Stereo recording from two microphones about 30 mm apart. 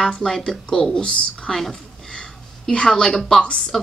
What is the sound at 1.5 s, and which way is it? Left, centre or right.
A woman's voice, centre.